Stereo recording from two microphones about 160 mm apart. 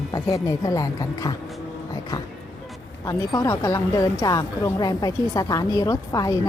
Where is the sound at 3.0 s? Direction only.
20° left (ahead or behind).